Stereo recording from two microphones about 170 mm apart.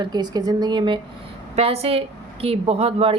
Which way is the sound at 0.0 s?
25° right (ahead or behind).